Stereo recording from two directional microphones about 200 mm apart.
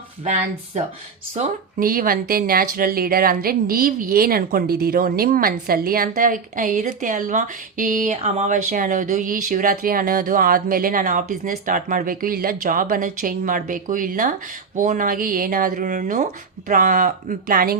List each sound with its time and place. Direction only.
0.3 s speech: 35° right (ahead or behind)
1.4 s speech: 45° right (ahead or behind)